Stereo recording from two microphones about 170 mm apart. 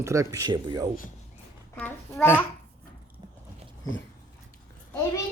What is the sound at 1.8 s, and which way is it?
Speech, 10° left (ahead or behind).